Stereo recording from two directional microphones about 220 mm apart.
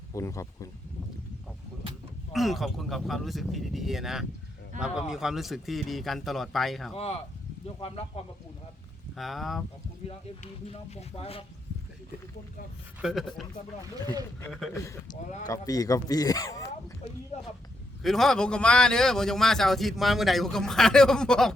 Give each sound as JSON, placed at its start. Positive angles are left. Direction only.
{"t": 0.1, "sound": "speech", "side_deg": 15}
{"t": 2.3, "sound": "a man's voice", "side_deg": 0}
{"t": 6.9, "sound": "speech", "side_deg": 25}
{"t": 9.1, "sound": "a man's voice", "side_deg": 0}
{"t": 10.1, "sound": "speech", "side_deg": 30}
{"t": 13.0, "sound": "a man's voice", "side_deg": 0}
{"t": 15.1, "sound": "speech", "side_deg": 35}
{"t": 15.4, "sound": "speech", "side_deg": 15}
{"t": 17.3, "sound": "speech", "side_deg": 30}
{"t": 18.0, "sound": "a man's voice", "side_deg": 0}